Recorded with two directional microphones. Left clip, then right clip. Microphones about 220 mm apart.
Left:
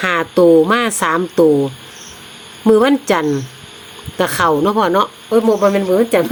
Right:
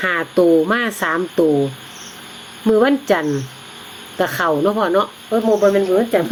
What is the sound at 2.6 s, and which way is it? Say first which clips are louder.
Speech: left 3 dB; 20° left (ahead or behind).